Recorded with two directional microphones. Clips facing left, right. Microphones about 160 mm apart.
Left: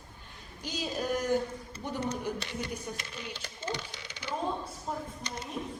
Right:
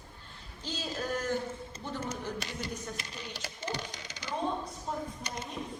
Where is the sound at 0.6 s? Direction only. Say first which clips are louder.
Left 3 dB; 15° left (ahead or behind).